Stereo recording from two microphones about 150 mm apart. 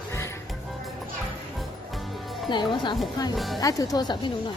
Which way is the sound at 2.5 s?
30° left (ahead or behind).